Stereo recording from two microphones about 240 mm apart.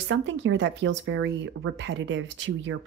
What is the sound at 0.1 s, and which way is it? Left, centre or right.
A woman's voice, right.